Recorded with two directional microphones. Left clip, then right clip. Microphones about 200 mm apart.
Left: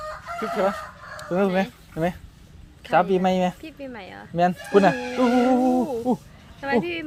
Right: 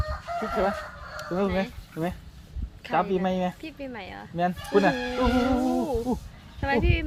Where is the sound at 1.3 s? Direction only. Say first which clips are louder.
Left 5 dB; 55° left (ahead or behind).